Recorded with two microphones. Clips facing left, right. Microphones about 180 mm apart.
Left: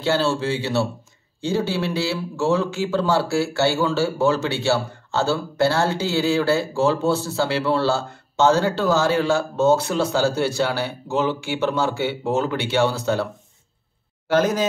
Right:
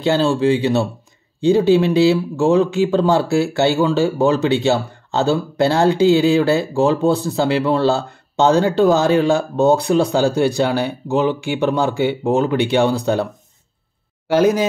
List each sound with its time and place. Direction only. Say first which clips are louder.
0.0 s a man's voice: right 5 dB; 15° right (ahead or behind)